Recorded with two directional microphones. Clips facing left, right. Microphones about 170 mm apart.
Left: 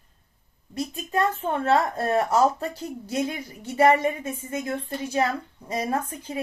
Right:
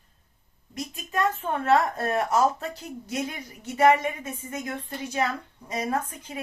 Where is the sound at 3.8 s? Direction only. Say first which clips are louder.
Left 1 dB; 30° left (ahead or behind).